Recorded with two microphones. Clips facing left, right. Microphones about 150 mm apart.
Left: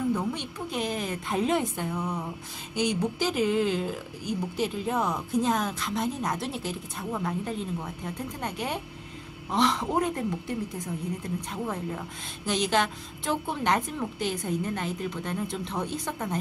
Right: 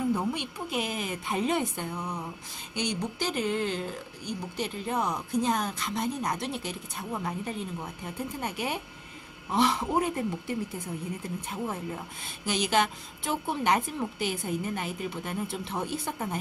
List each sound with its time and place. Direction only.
0.1 s speech: 10° right (ahead or behind)